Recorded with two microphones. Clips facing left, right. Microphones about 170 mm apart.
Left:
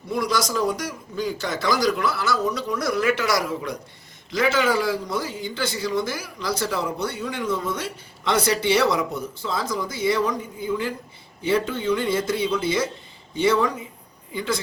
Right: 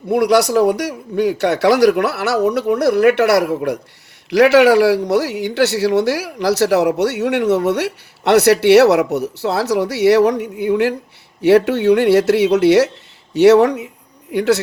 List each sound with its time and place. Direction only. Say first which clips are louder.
0.1 s speech: right 11 dB; 65° right (ahead or behind)